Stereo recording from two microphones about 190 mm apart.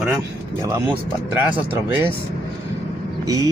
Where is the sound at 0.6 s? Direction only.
10° right (ahead or behind).